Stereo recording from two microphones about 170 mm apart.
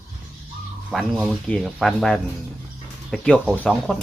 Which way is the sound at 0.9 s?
Centre (ahead or behind).